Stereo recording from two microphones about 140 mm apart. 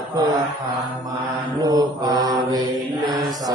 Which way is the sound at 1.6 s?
25° right (ahead or behind).